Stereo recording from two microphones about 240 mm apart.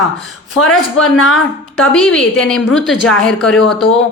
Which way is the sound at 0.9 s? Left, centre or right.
Left.